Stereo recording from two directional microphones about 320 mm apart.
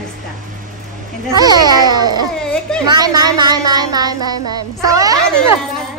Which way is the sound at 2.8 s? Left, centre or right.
Centre.